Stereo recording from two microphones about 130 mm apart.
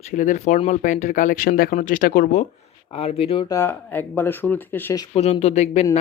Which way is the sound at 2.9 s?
50° left (ahead or behind).